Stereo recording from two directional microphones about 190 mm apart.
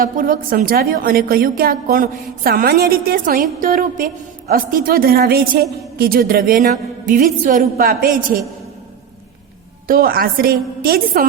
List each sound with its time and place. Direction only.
0.0 s a woman's voice: 45° right (ahead or behind)
9.8 s a woman's voice: 50° right (ahead or behind)